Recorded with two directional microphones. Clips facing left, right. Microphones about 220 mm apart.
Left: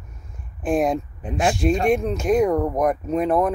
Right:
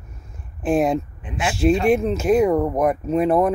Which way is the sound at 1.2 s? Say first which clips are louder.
Left 4 dB; 40° left (ahead or behind).